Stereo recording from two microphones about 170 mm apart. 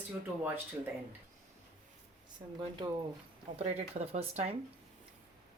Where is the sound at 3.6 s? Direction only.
35° right (ahead or behind).